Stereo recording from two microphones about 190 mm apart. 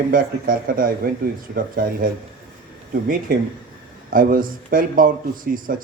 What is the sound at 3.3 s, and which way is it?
Speech, 50° right (ahead or behind).